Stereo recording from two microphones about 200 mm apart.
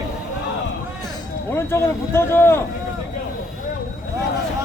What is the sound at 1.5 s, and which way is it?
Speech, 10° left (ahead or behind).